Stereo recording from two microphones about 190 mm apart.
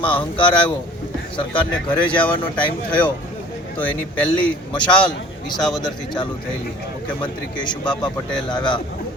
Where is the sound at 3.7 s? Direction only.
10° left (ahead or behind).